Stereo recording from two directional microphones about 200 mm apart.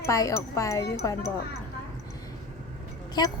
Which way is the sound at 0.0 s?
15° left (ahead or behind).